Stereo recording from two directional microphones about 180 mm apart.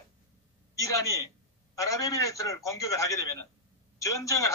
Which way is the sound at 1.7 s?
20° left (ahead or behind).